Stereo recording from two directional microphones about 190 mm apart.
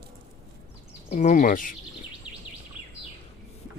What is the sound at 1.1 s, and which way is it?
Speech, 40° left (ahead or behind).